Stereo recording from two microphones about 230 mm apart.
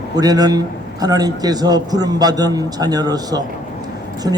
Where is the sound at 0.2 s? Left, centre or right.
Centre.